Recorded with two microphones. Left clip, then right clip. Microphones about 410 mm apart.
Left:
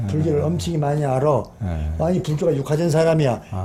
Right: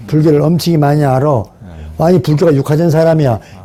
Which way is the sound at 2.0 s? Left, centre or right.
Right.